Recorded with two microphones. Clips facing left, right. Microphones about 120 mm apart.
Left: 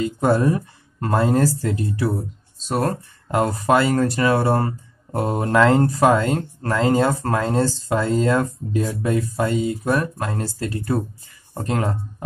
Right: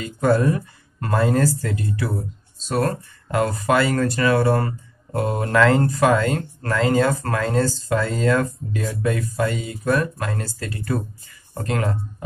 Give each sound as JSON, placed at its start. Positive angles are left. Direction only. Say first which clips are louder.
{"t": 0.0, "sound": "speech", "louder": "left 1 dB", "side_deg": 20}